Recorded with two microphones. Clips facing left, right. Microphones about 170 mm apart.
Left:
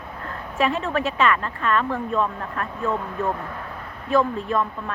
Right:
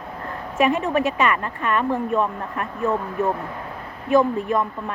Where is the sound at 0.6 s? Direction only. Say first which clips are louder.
Right 3 dB; 15° right (ahead or behind).